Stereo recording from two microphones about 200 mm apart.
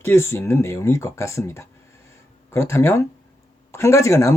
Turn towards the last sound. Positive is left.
turn(degrees=15)  # may be behind; listen again after turning